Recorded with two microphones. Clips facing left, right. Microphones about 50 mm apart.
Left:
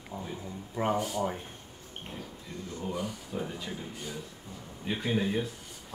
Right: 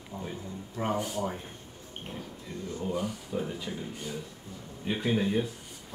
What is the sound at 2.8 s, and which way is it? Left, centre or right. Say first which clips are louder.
Speech: right 2 dB; centre.